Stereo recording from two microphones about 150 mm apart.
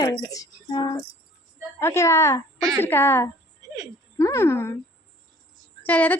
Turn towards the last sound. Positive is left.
turn(degrees=10)  # may be behind; listen again after turning